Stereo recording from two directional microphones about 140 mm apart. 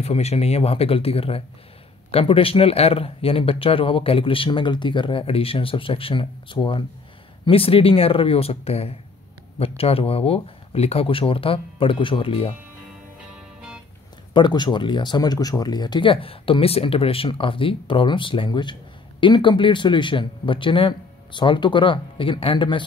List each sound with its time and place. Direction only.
0.0 s speech: 50° left (ahead or behind)
14.3 s speech: 30° left (ahead or behind)